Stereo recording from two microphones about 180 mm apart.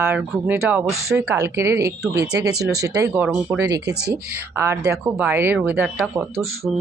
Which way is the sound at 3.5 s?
20° right (ahead or behind).